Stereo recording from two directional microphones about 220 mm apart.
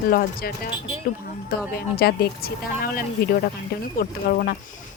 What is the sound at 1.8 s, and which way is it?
Speech, 45° left (ahead or behind).